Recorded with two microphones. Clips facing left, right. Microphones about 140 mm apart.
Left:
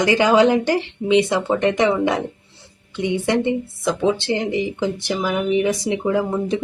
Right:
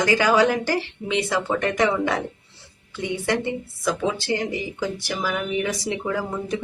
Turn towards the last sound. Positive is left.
turn(degrees=20)  # may be behind; listen again after turning